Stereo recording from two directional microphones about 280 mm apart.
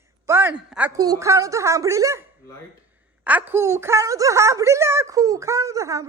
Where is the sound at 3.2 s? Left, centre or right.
Centre.